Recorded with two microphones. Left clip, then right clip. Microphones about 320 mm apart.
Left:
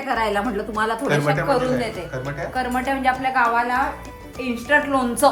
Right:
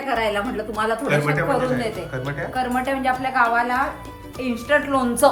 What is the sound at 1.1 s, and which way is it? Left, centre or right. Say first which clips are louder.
Speech: left 1 dB; centre.